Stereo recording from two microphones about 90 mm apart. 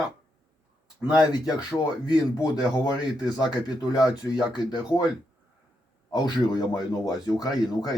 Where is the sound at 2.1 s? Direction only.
45° left (ahead or behind).